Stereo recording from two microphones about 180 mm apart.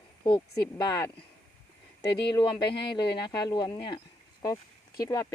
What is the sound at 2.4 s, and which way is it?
Speech, 25° left (ahead or behind).